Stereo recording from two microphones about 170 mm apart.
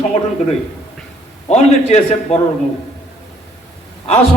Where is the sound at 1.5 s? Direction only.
40° left (ahead or behind).